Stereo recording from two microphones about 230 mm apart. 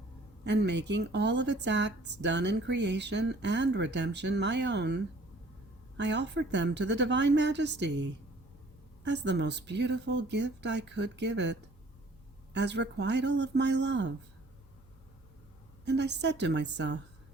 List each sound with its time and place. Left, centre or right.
0.4 s a woman's voice: right
6.0 s a woman's voice: right
12.5 s a woman's voice: right
15.8 s a woman's voice: right